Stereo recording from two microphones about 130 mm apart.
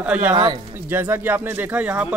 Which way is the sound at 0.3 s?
30° right (ahead or behind).